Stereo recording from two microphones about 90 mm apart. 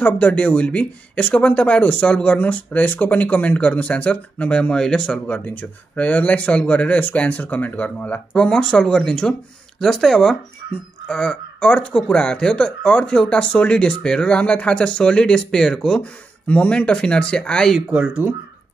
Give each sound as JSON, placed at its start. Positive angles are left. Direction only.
{"t": 0.0, "sound": "speech", "side_deg": 15}
{"t": 17.9, "sound": "speech", "side_deg": -15}